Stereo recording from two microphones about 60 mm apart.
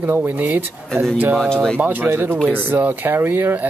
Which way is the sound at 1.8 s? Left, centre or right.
Right.